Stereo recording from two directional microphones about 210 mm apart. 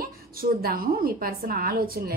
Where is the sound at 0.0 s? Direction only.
45° right (ahead or behind).